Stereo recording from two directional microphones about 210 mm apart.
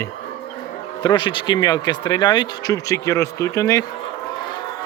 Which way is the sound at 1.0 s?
20° left (ahead or behind).